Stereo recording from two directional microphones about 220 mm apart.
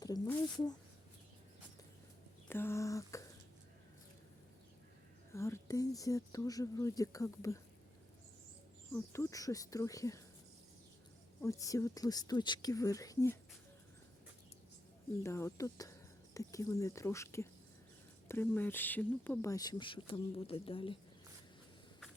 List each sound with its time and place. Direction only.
0.0 s a sound: 15° left (ahead or behind)
2.5 s speech: 10° left (ahead or behind)
5.3 s speech: 10° left (ahead or behind)
8.9 s speech: 10° left (ahead or behind)
11.3 s speech: 15° left (ahead or behind)
15.2 s speech: 10° left (ahead or behind)